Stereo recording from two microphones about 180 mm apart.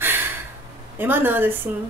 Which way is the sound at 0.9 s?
10° right (ahead or behind).